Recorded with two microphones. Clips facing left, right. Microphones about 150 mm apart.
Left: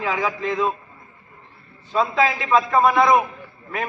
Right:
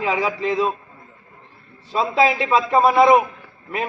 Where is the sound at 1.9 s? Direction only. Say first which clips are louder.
Right 2 dB; 30° right (ahead or behind).